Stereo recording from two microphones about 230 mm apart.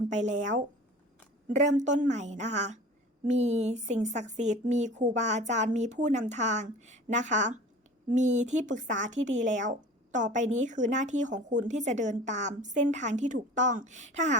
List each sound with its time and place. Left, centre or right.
0.1 s a woman's voice: right